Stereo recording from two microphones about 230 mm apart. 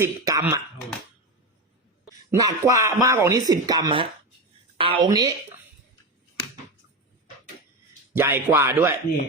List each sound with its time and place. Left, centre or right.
0.0 s speech: centre
2.4 s a woman's voice: centre
8.1 s speech: centre